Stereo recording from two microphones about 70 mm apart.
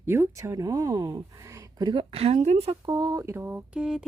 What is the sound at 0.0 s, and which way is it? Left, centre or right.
Speech, right.